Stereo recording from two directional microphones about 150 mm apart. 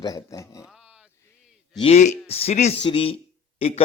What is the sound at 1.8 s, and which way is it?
Speech, 50° left (ahead or behind).